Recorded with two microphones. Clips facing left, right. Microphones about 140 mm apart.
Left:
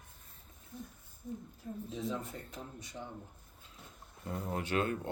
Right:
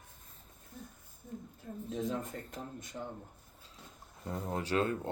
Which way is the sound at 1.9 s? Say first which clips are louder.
Right 3 dB; 45° right (ahead or behind).